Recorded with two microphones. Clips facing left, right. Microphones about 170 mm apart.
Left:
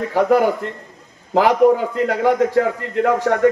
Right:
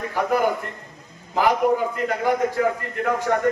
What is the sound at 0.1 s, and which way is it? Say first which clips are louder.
A man's voice: left 6 dB; 75° left (ahead or behind).